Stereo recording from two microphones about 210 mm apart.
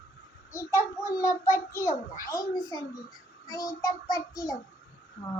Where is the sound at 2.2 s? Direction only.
15° left (ahead or behind).